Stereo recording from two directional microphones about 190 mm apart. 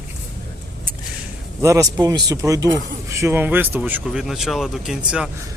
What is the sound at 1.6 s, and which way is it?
Speech, 15° right (ahead or behind).